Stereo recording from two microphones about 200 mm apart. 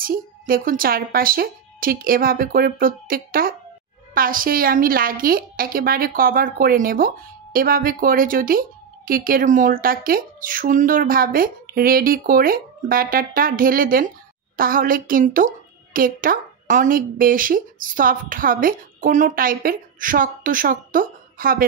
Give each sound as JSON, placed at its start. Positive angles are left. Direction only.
{"t": 0.0, "sound": "a woman's voice", "side_deg": -45}